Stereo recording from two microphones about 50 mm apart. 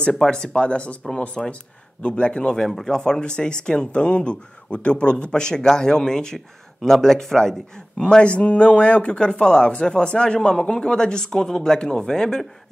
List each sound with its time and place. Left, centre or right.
0.1 s speech: centre
2.7 s speech: centre